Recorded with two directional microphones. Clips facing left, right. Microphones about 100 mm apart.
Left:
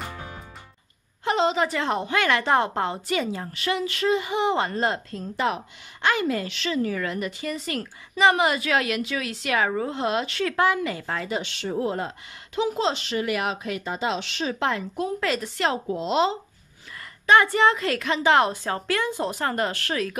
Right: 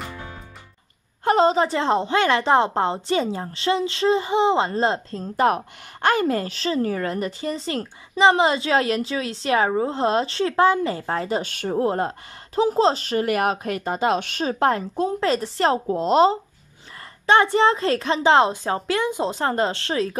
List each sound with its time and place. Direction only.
1.2 s a woman's voice: 40° right (ahead or behind)
5.3 s a woman's voice: 45° right (ahead or behind)
17.3 s a woman's voice: 30° right (ahead or behind)